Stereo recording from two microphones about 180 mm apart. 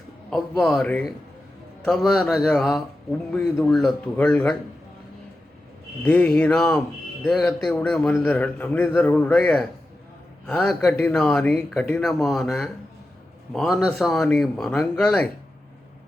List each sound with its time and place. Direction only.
0.3 s speech: 5° left (ahead or behind)
6.1 s a man's voice: 5° left (ahead or behind)